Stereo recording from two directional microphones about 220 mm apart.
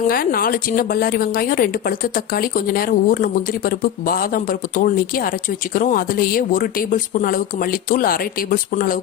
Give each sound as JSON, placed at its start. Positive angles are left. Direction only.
{"t": 0.1, "sound": "a woman's voice", "side_deg": 40}